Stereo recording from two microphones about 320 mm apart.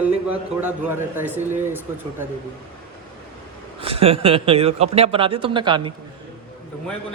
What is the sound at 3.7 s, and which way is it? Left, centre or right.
A man's voice, centre.